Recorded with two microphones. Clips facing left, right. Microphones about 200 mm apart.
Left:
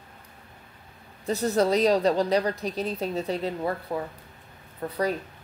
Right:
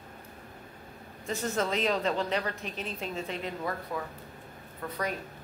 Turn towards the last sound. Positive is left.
turn(degrees=35)  # may be behind; listen again after turning